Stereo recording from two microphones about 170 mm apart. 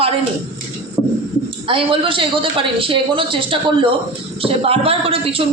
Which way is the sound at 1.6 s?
30° right (ahead or behind).